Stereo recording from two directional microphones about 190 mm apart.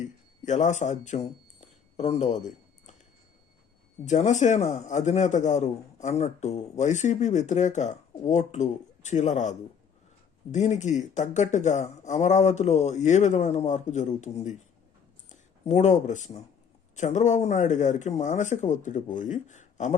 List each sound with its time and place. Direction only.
0.0 s speech: 40° left (ahead or behind)
1.6 s a sound: 35° left (ahead or behind)
4.0 s a man's voice: 40° left (ahead or behind)